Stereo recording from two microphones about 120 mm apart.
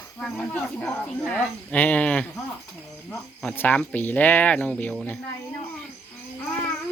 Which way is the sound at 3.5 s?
15° left (ahead or behind).